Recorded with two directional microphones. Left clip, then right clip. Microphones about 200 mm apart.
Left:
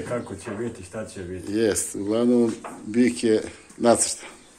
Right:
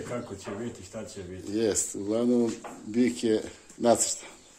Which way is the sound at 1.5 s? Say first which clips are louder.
Left 4 dB; 10° right (ahead or behind).